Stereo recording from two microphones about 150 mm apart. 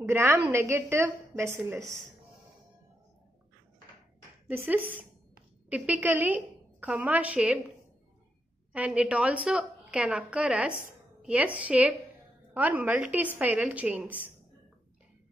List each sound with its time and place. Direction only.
0.0 s a woman's voice: 15° right (ahead or behind)
4.5 s a woman's voice: 10° right (ahead or behind)
8.7 s a woman's voice: 10° right (ahead or behind)